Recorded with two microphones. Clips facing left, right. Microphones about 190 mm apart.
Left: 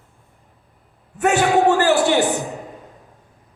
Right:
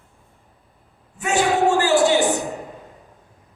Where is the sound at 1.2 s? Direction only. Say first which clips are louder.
Left 3 dB; 60° left (ahead or behind).